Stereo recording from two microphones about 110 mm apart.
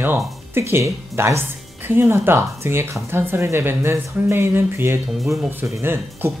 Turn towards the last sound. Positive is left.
turn(degrees=-20)  # may be behind; listen again after turning